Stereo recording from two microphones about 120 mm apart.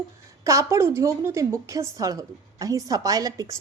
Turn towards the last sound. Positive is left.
turn(degrees=-30)  # may be behind; listen again after turning